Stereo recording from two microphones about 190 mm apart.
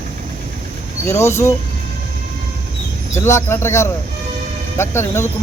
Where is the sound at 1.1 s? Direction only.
15° left (ahead or behind).